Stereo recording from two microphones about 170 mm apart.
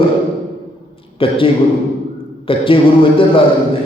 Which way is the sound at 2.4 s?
30° left (ahead or behind).